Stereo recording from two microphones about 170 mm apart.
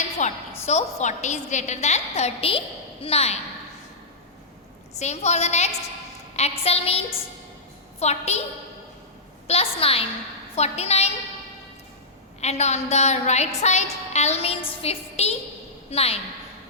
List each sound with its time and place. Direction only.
0.2 s a woman's voice: 45° left (ahead or behind)
4.9 s a woman's voice: 40° left (ahead or behind)
9.5 s a woman's voice: 35° left (ahead or behind)
12.4 s a woman's voice: 40° left (ahead or behind)